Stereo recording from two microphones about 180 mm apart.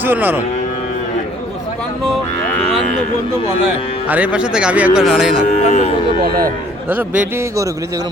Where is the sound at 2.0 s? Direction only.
Centre (ahead or behind).